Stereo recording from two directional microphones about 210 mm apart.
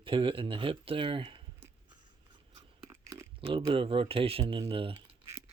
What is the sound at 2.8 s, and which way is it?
Pig, 15° right (ahead or behind).